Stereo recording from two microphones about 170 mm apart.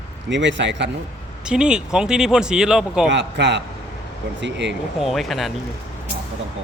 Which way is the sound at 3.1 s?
90° right.